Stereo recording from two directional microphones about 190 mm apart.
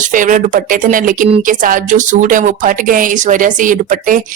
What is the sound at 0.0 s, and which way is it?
Speech, 45° right (ahead or behind).